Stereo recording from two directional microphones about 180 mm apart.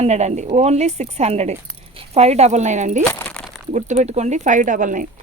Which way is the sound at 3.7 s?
40° right (ahead or behind).